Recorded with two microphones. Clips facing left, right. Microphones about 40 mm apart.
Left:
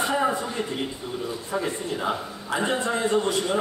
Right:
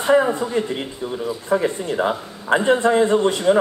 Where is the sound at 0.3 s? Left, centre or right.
Right.